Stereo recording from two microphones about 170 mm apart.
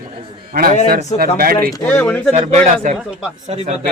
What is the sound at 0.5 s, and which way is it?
Speech, 60° right (ahead or behind).